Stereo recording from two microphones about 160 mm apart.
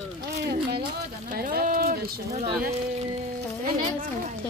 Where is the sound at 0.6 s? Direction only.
75° right (ahead or behind).